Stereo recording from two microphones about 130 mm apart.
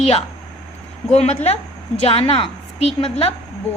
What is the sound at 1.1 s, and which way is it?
A woman's voice, 55° left (ahead or behind).